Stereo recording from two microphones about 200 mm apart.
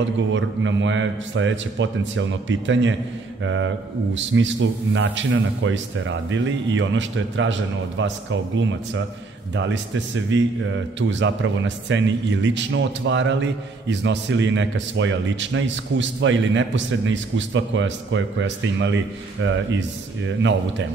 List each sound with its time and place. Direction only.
0.3 s a man's voice: 70° right (ahead or behind)